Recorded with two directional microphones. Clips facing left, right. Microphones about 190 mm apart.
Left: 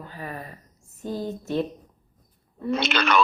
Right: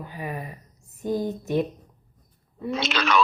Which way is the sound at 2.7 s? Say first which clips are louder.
Left 1 dB; centre (ahead or behind).